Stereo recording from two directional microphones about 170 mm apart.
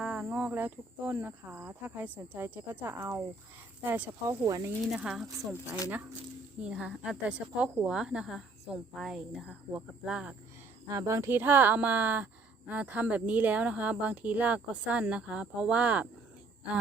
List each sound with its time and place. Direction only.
0.0 s speech: 5° right (ahead or behind)
4.3 s speech: 20° right (ahead or behind)
4.9 s speech: 5° right (ahead or behind)
10.8 s speech: 20° right (ahead or behind)